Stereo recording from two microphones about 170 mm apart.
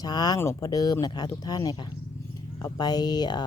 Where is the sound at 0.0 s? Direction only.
25° left (ahead or behind).